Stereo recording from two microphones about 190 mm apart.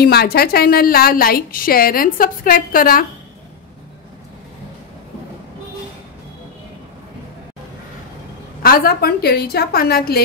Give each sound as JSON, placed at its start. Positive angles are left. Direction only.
{"t": 0.0, "sound": "a woman's voice", "side_deg": 55}
{"t": 8.6, "sound": "a woman's voice", "side_deg": 50}